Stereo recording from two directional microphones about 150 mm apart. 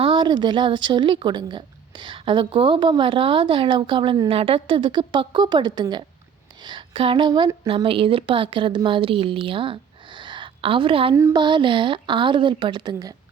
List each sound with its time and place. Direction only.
0.0 s a woman's voice: 35° right (ahead or behind)
11.1 s speech: 20° right (ahead or behind)
11.3 s a woman's voice: 30° right (ahead or behind)